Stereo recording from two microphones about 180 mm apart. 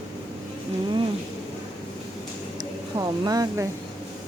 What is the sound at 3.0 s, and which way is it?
Speech, 20° right (ahead or behind).